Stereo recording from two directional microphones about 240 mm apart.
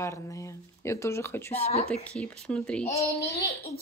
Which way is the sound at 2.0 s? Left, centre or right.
Centre.